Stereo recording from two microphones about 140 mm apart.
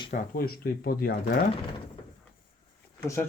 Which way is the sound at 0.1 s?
90° left.